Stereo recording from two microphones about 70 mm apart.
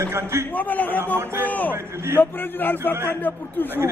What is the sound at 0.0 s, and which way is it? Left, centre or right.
Speech, right.